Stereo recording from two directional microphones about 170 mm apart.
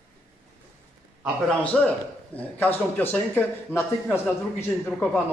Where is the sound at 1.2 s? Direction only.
10° left (ahead or behind).